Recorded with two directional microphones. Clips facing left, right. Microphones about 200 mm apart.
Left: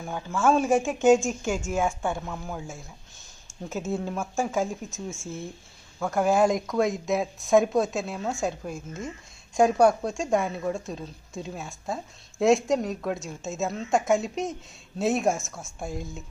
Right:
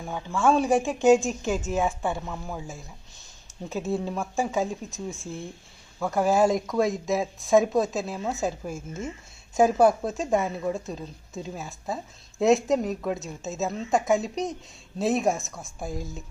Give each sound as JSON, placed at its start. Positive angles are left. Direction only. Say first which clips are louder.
{"t": 0.0, "sound": "speech", "louder": "even", "side_deg": 0}